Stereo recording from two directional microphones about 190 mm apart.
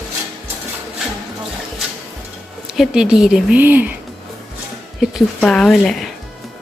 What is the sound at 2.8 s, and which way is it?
Speech, 5° right (ahead or behind).